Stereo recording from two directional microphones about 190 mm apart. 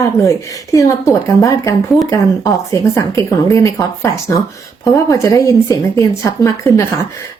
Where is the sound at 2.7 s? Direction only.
15° left (ahead or behind).